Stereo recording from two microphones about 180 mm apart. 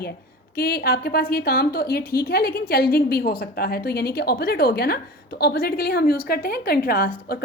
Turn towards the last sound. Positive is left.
turn(degrees=55)  # may be behind; listen again after turning